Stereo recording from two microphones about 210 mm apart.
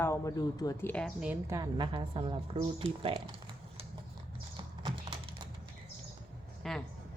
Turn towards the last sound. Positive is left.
turn(degrees=0)  # may be behind; listen again after turning